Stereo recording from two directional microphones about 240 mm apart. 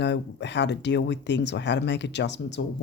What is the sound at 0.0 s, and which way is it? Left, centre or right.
Speech, left.